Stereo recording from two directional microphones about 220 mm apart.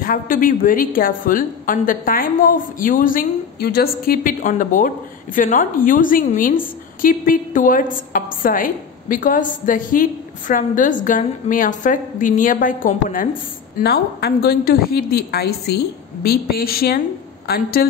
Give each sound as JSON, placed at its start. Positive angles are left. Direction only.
{"t": 0.0, "sound": "a woman's voice", "side_deg": 40}